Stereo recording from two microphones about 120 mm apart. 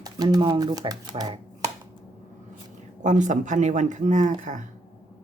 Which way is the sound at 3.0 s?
90° right.